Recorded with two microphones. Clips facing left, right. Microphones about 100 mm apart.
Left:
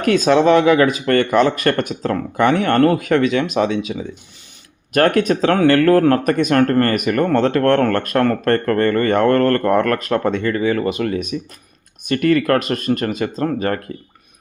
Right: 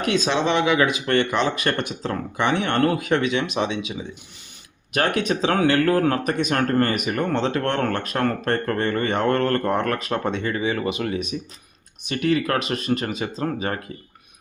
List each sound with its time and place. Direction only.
0.0 s speech: 50° left (ahead or behind)